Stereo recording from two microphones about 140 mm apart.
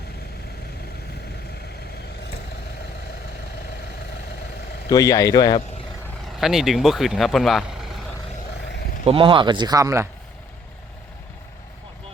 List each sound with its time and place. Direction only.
4.9 s speech: 25° left (ahead or behind)
6.2 s speech: 5° right (ahead or behind)
9.0 s speech: 40° right (ahead or behind); by 10.1 s 20° right (ahead or behind)